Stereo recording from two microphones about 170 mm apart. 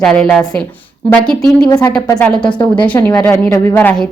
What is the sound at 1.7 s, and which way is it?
Speech, 20° left (ahead or behind).